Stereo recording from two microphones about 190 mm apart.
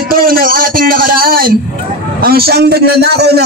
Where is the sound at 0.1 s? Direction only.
50° right (ahead or behind).